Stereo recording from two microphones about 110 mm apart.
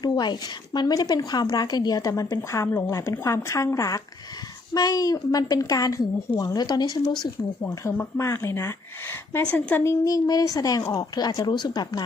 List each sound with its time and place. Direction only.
0.0 s a woman's voice: 40° left (ahead or behind)
7.6 s a woman's voice: 20° left (ahead or behind)
9.3 s a woman's voice: 15° left (ahead or behind); by 12.0 s 40° left (ahead or behind)